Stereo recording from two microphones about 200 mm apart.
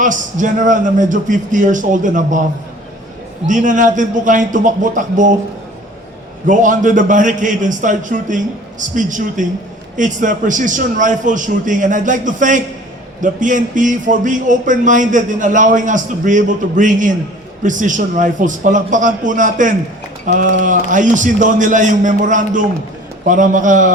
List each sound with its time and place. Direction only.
0.0 s a man's voice: 40° right (ahead or behind)
3.4 s a man's voice: 40° right (ahead or behind)
6.5 s a man's voice: 40° right (ahead or behind)